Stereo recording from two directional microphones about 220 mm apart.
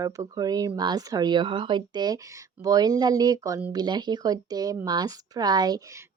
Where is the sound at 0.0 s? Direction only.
20° right (ahead or behind).